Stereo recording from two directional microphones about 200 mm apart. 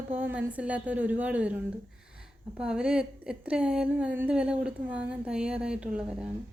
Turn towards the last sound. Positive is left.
turn(degrees=-5)  # may be behind; listen again after turning